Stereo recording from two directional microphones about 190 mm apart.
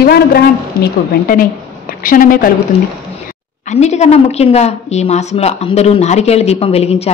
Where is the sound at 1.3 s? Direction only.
45° left (ahead or behind).